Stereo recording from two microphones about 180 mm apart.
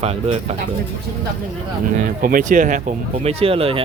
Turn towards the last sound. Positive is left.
turn(degrees=-30)  # may be behind; listen again after turning